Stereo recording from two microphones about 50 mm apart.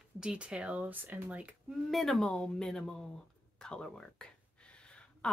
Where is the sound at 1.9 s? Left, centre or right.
Centre.